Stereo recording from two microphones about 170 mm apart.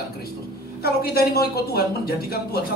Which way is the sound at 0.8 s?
65° left (ahead or behind).